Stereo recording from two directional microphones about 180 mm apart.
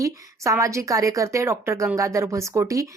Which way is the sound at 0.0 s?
15° right (ahead or behind).